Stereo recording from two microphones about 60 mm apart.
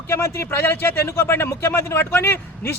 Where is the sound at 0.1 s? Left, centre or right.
Left.